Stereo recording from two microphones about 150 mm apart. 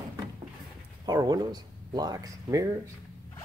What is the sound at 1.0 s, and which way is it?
Speech, 25° right (ahead or behind).